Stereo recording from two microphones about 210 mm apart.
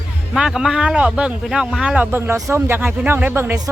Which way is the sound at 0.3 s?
Centre (ahead or behind).